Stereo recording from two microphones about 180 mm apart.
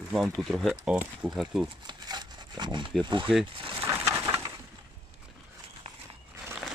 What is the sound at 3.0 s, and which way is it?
Speech, 25° right (ahead or behind).